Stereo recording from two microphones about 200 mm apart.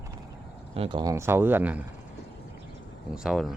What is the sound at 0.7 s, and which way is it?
Speech, 25° right (ahead or behind).